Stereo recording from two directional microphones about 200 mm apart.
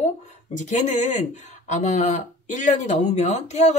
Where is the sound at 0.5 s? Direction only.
35° left (ahead or behind).